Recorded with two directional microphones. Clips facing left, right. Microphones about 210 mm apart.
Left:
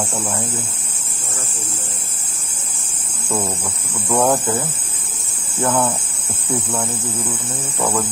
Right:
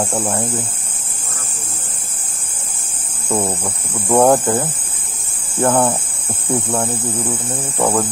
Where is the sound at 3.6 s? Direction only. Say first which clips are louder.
Right 3 dB; 55° right (ahead or behind).